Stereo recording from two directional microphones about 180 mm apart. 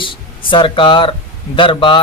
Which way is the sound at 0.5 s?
25° left (ahead or behind).